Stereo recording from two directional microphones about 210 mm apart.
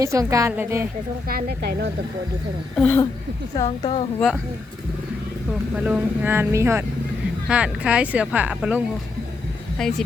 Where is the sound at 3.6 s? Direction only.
25° left (ahead or behind).